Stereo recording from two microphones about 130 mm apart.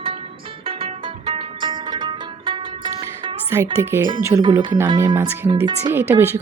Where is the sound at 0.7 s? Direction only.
45° right (ahead or behind).